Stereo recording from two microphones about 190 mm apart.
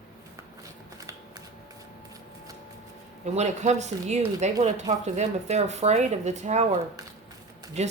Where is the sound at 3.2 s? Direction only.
40° right (ahead or behind).